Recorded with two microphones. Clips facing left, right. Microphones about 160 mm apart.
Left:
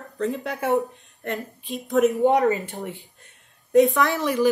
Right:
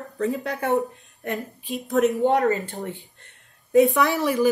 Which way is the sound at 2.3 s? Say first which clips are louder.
Left 1 dB; 20° left (ahead or behind).